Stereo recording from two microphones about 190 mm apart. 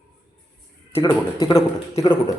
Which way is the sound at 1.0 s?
20° left (ahead or behind).